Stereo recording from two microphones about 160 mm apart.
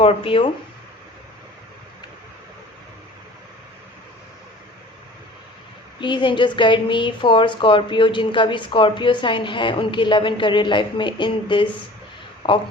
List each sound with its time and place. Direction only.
0.0 s a woman's voice: 35° left (ahead or behind)
6.0 s a woman's voice: 30° left (ahead or behind)